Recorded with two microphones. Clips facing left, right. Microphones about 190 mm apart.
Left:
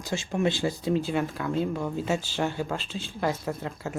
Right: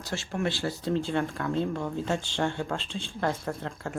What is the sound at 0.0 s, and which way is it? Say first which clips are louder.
Speech: left 4 dB; 15° left (ahead or behind).